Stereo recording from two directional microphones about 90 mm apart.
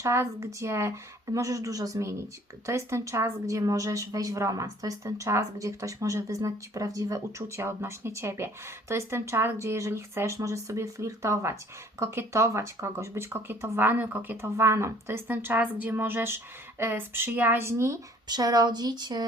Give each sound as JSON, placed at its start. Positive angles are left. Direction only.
{"t": 0.0, "sound": "a woman's voice", "side_deg": -30}
{"t": 14.5, "sound": "speech", "side_deg": -30}
{"t": 18.3, "sound": "speech", "side_deg": -50}